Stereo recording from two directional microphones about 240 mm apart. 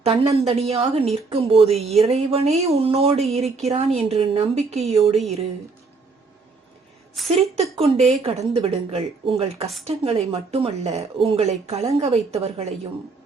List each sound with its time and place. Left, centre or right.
0.0 s speech: right
7.3 s speech: right